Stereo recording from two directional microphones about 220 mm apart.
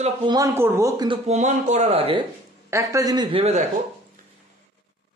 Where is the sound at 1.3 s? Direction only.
30° right (ahead or behind).